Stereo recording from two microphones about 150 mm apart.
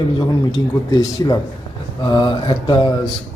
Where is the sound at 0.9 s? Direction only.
25° left (ahead or behind).